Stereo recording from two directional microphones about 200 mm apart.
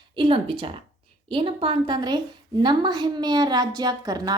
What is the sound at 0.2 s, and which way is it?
A woman's voice, 25° right (ahead or behind).